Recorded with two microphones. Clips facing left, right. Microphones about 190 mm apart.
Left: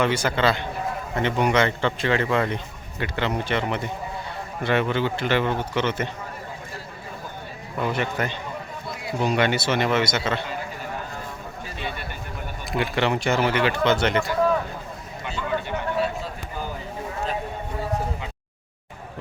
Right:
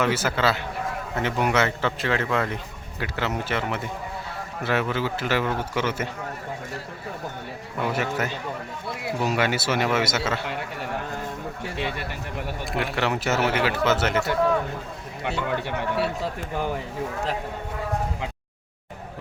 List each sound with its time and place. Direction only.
0.0 s speech: 5° right (ahead or behind)
7.8 s speech: 5° right (ahead or behind)
10.4 s a sound: 70° right (ahead or behind)
11.6 s a man's voice: 70° right (ahead or behind)
12.8 s speech: centre (ahead or behind)
15.2 s speech: 65° right (ahead or behind)